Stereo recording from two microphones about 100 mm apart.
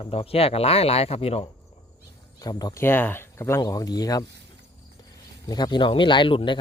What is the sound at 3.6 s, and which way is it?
Speech, 40° left (ahead or behind).